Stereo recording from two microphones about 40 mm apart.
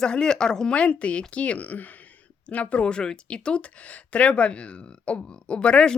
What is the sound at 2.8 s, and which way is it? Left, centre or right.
Speech, left.